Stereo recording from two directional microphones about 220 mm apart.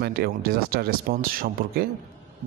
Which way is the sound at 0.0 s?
45° right (ahead or behind).